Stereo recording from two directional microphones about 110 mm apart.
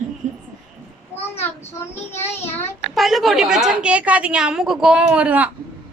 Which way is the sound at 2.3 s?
20° left (ahead or behind).